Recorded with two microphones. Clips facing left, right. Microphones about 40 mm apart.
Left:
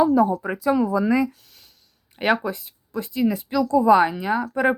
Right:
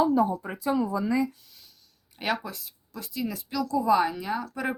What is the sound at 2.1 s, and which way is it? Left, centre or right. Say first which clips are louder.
Speech: left 8 dB; left.